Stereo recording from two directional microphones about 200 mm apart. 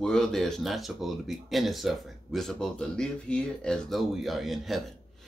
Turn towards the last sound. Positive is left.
turn(degrees=0)  # may be behind; listen again after turning